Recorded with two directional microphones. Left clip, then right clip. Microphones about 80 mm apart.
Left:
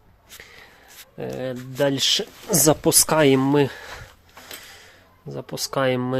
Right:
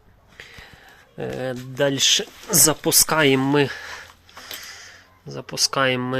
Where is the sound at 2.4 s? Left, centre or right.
Left.